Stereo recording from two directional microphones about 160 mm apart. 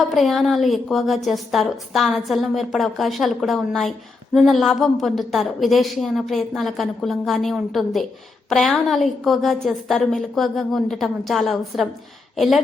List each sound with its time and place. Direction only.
0.1 s a woman's voice: centre (ahead or behind)